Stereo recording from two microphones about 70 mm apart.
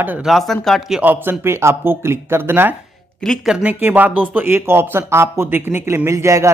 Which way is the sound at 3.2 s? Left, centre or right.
Centre.